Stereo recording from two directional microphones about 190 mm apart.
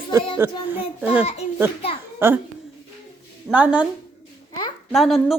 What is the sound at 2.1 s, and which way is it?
Speech, 10° right (ahead or behind).